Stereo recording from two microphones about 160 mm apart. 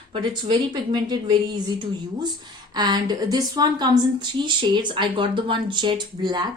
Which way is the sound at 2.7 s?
25° right (ahead or behind).